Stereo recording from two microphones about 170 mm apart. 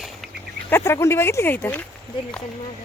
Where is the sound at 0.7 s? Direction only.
15° left (ahead or behind).